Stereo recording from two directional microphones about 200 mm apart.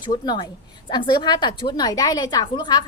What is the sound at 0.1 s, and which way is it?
A woman's voice, 20° left (ahead or behind).